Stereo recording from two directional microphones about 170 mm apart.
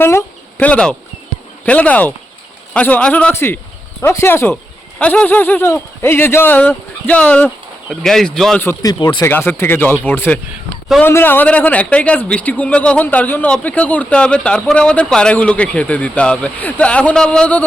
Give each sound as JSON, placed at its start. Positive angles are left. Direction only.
{"t": 0.0, "sound": "insect", "side_deg": 15}
{"t": 1.6, "sound": "speech", "side_deg": 10}
{"t": 8.6, "sound": "speech", "side_deg": 20}
{"t": 9.2, "sound": "speech", "side_deg": 15}